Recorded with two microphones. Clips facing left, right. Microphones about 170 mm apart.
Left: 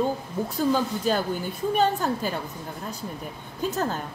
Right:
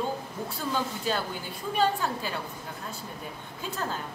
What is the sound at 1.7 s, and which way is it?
Speech, 45° left (ahead or behind).